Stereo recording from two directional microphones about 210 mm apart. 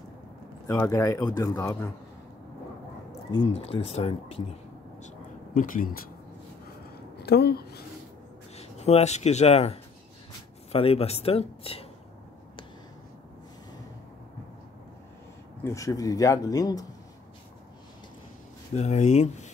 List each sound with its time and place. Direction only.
0.7 s speech: 15° left (ahead or behind)
3.5 s speech: 30° left (ahead or behind)
5.0 s a sound: 40° left (ahead or behind)
7.2 s a woman's voice: 50° left (ahead or behind)
8.5 s speech: 30° left (ahead or behind)
15.6 s speech: 15° left (ahead or behind)
18.8 s speech: 35° left (ahead or behind)